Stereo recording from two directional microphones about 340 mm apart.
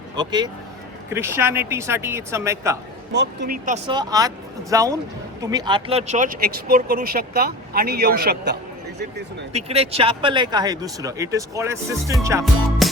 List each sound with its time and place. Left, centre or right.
0.2 s speech: centre
3.1 s speech: right
3.8 s speech: centre; by 9.6 s right
9.6 s speech: centre